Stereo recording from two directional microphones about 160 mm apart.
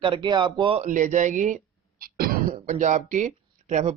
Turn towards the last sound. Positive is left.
turn(degrees=-50)  # may be behind; listen again after turning